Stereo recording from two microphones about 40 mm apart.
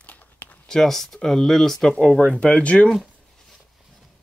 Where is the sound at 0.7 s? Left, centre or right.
Centre.